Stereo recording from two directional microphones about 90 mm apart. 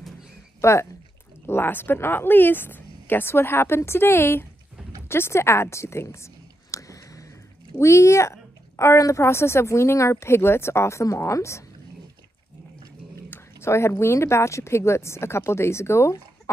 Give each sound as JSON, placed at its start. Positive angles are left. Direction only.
{"t": 0.6, "sound": "speech", "side_deg": 30}
{"t": 5.0, "sound": "a sound", "side_deg": 25}
{"t": 7.7, "sound": "a woman's voice", "side_deg": 35}
{"t": 13.3, "sound": "a woman's voice", "side_deg": 30}